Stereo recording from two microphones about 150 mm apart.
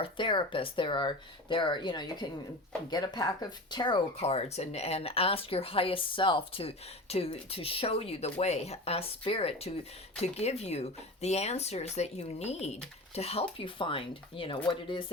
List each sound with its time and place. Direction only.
0.0 s speech: 35° left (ahead or behind)